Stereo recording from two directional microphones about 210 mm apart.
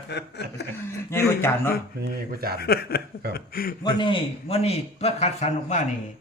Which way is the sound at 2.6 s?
45° left (ahead or behind).